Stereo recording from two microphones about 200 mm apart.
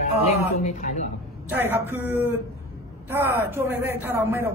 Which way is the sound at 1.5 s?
10° right (ahead or behind).